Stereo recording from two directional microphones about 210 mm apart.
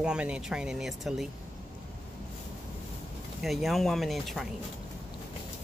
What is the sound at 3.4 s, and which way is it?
Speech, centre (ahead or behind).